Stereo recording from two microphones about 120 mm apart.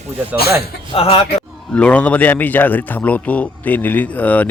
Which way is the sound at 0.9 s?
55° left (ahead or behind).